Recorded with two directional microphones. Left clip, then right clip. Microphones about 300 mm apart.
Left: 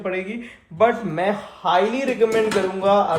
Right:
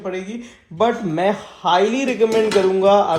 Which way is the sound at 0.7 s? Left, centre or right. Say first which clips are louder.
Even; right.